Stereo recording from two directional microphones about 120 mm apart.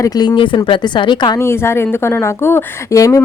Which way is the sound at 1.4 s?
20° left (ahead or behind).